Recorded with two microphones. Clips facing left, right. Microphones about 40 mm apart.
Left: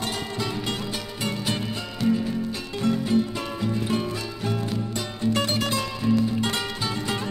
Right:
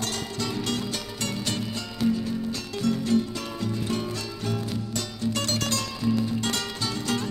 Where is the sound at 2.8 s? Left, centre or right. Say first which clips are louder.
Left 2 dB; left.